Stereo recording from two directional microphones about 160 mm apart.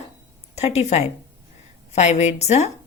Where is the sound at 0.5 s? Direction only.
45° left (ahead or behind).